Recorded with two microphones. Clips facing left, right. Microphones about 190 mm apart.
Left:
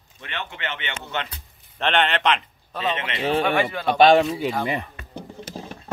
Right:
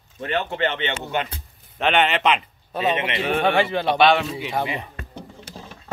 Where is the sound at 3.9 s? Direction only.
40° left (ahead or behind).